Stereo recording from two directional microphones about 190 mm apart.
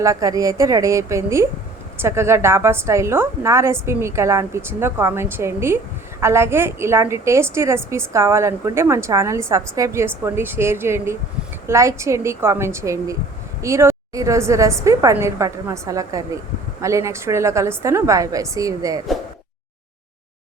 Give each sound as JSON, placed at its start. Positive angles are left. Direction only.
{"t": 0.0, "sound": "a woman's voice", "side_deg": -15}